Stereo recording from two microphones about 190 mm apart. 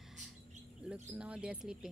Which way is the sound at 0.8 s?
5° right (ahead or behind).